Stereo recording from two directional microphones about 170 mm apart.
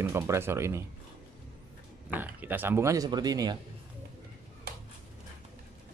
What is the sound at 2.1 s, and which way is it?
Speech, 10° right (ahead or behind).